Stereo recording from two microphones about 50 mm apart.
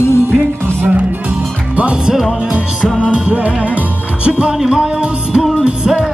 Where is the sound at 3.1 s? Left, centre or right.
Right.